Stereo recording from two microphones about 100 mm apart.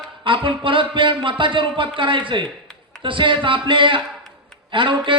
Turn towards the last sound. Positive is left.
turn(degrees=-55)  # may be behind; listen again after turning